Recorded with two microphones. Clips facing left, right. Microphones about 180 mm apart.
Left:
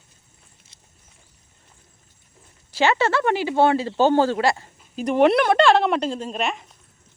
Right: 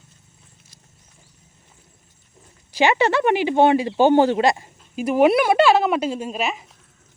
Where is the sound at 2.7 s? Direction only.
15° right (ahead or behind).